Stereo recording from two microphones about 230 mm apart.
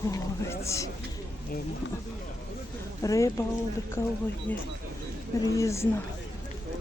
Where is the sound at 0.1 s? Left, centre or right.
Centre.